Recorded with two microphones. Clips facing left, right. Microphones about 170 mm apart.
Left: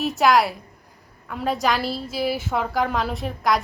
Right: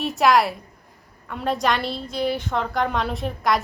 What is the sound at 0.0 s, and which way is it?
A woman's voice, centre (ahead or behind).